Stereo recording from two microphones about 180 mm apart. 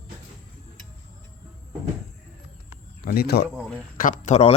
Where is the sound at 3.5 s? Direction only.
5° left (ahead or behind).